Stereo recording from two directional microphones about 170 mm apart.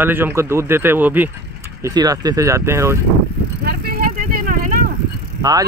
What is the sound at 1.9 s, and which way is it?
Speech, 25° right (ahead or behind).